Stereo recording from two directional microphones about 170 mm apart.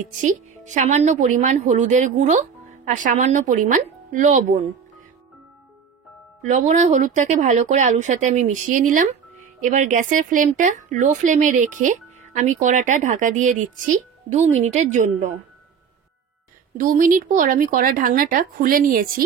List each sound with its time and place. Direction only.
0.2 s a woman's voice: 45° right (ahead or behind)
6.4 s a woman's voice: 45° right (ahead or behind)
16.7 s speech: 50° right (ahead or behind)